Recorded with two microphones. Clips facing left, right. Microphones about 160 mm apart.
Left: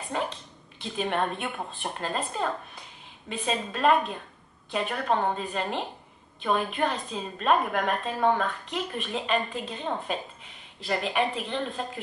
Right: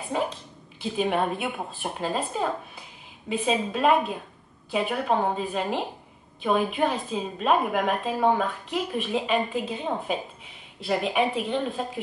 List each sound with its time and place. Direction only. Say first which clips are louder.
0.1 s a woman's voice: right 3 dB; 5° right (ahead or behind)